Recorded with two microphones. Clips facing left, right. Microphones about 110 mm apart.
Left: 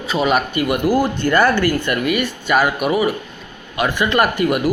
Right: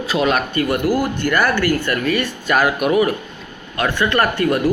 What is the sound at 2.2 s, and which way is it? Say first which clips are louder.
Speech: left 1 dB; centre (ahead or behind).